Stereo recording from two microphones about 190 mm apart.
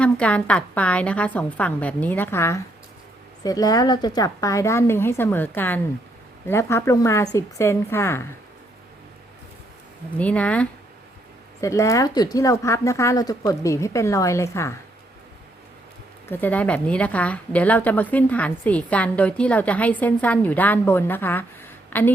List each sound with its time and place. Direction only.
0.0 s a woman's voice: 5° left (ahead or behind)
10.2 s a woman's voice: 5° left (ahead or behind)
16.3 s a woman's voice: 10° left (ahead or behind)